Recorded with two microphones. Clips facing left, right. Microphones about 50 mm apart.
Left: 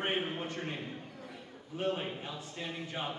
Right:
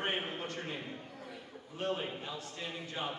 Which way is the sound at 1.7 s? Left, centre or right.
Centre.